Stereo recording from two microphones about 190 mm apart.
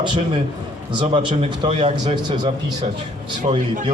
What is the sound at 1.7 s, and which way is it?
Speech, 35° right (ahead or behind).